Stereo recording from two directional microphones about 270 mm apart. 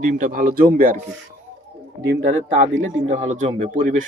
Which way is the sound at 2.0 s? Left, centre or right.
Right.